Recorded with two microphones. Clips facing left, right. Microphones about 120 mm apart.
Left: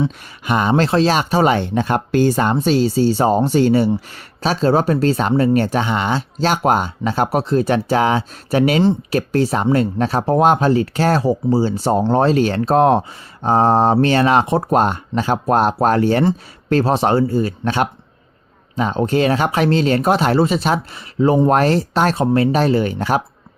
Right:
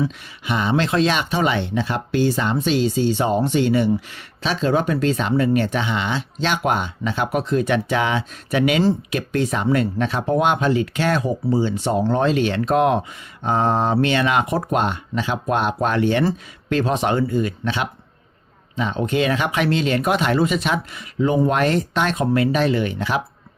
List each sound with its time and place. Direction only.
0.4 s speech: 50° left (ahead or behind); by 14.7 s 30° left (ahead or behind)
14.7 s speech: 40° left (ahead or behind)